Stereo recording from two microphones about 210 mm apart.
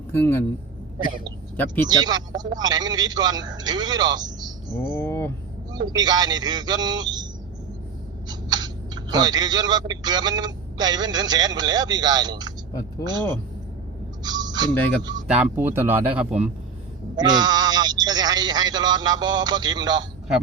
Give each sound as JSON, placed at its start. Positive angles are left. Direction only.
{"t": 0.1, "sound": "speech", "side_deg": 10}
{"t": 1.9, "sound": "speech", "side_deg": -20}
{"t": 4.9, "sound": "a sound", "side_deg": 10}
{"t": 5.7, "sound": "speech", "side_deg": -20}
{"t": 8.3, "sound": "a man's voice", "side_deg": -20}
{"t": 14.3, "sound": "a sound", "side_deg": -20}
{"t": 15.3, "sound": "speech", "side_deg": -5}
{"t": 17.2, "sound": "speech", "side_deg": -20}